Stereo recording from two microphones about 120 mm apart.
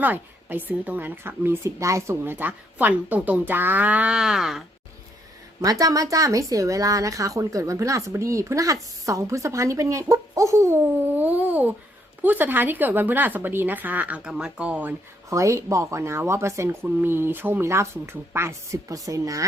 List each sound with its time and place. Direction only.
0.0 s a woman's voice: 15° right (ahead or behind)
5.6 s a woman's voice: 30° right (ahead or behind); by 14.9 s 10° right (ahead or behind)
15.3 s speech: 25° right (ahead or behind)